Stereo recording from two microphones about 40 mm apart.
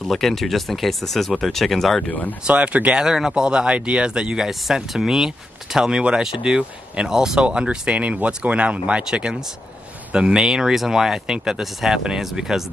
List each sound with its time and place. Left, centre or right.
0.1 s speech: centre
2.4 s speech: right
3.0 s speech: centre
5.9 s speech: right